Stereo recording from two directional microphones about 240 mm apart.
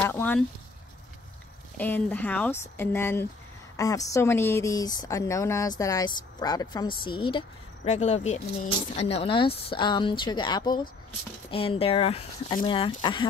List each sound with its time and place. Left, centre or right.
0.0 s speech: centre
1.8 s speech: centre